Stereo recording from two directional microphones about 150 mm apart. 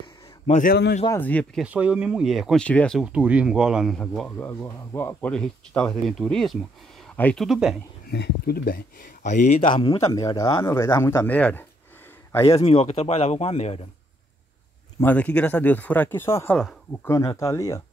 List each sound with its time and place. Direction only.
0.5 s a man's voice: 65° left (ahead or behind)
1.1 s speech: 10° left (ahead or behind)
1.6 s speech: 10° right (ahead or behind); by 3.0 s 10° left (ahead or behind)
3.0 s speech: 10° right (ahead or behind)
4.5 s speech: 15° left (ahead or behind)
7.4 s speech: 5° right (ahead or behind)
8.1 s speech: 80° left; by 9.8 s 55° left (ahead or behind)
9.8 s speech: 30° left (ahead or behind)
12.5 s speech: 40° left (ahead or behind)
15.0 s speech: 10° left (ahead or behind)